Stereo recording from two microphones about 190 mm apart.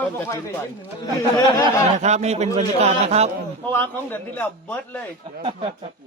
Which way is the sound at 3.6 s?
10° left (ahead or behind).